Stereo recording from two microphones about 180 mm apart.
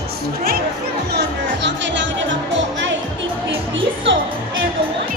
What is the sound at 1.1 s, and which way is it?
Music, 80° right.